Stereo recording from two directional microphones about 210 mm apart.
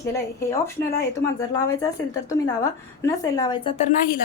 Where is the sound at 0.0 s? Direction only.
15° left (ahead or behind).